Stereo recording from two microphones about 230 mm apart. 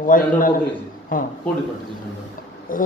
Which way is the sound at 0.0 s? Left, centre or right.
Left.